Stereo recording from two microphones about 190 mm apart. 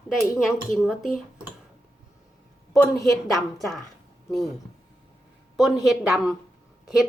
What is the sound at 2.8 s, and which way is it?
Speech, 15° left (ahead or behind).